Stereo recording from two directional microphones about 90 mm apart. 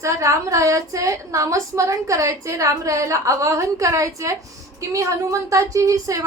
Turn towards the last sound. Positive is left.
turn(degrees=-40)  # may be behind; listen again after turning